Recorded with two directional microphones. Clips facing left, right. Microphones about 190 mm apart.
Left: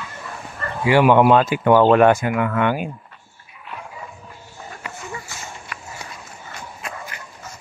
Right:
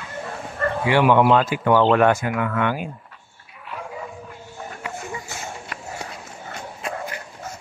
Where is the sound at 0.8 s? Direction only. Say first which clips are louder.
Left 3 dB; 10° left (ahead or behind).